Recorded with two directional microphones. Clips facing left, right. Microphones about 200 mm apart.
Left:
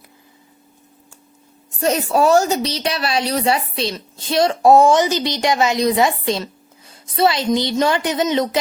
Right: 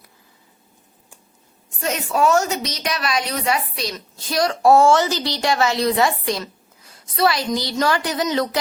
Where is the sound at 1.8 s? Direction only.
35° left (ahead or behind).